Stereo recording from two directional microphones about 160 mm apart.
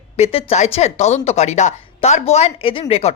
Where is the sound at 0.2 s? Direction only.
35° left (ahead or behind).